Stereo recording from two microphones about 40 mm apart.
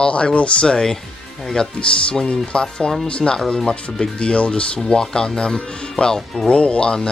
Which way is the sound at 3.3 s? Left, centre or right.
Centre.